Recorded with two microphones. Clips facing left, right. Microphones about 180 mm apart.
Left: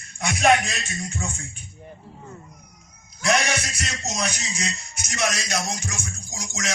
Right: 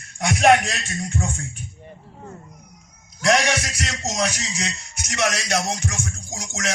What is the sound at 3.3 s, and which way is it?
Speech, 90° right.